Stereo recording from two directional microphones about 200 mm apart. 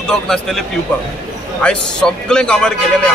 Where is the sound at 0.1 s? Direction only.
Centre (ahead or behind).